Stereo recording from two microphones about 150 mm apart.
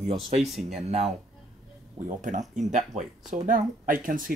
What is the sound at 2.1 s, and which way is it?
Speech, 55° right (ahead or behind).